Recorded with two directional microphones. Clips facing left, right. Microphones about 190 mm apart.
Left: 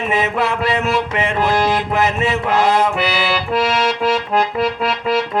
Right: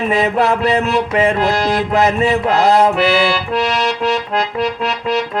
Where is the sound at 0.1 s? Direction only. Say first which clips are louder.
Right 4 dB; 35° right (ahead or behind).